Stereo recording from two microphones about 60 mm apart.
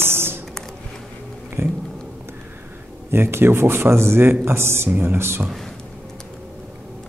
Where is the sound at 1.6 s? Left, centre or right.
Right.